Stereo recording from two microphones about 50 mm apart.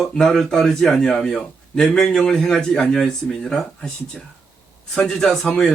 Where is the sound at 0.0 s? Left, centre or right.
Centre.